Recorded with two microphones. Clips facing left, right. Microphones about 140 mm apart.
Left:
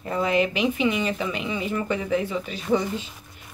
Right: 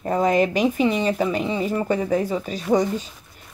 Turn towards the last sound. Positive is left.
turn(degrees=-40)  # may be behind; listen again after turning